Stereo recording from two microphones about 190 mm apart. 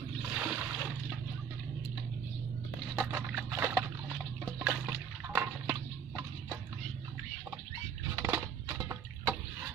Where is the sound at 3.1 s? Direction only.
10° right (ahead or behind).